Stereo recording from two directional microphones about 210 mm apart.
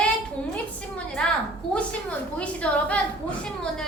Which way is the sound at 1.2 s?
5° left (ahead or behind).